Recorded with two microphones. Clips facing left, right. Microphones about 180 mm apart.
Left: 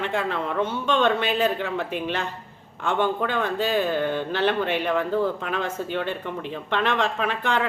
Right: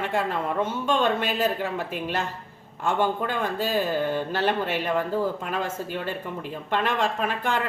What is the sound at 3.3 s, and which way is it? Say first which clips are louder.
Speech: left 2 dB; 45° right (ahead or behind).